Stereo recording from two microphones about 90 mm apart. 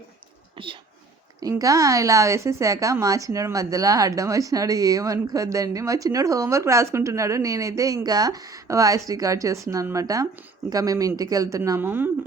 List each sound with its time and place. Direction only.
0.5 s whispering: 70° right (ahead or behind)
1.4 s a woman's voice: 40° right (ahead or behind)
11.8 s a woman's voice: 25° right (ahead or behind)